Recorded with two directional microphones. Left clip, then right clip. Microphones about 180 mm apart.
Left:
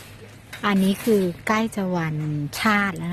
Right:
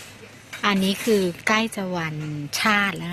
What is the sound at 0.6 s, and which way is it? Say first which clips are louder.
Speech: even; 10° left (ahead or behind).